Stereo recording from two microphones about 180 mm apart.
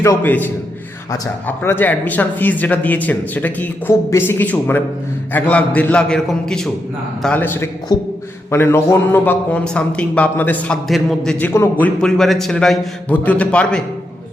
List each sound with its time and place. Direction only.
0.0 s a man's voice: 15° left (ahead or behind)
7.9 s a sound: 20° left (ahead or behind)
8.4 s a man's voice: 15° left (ahead or behind)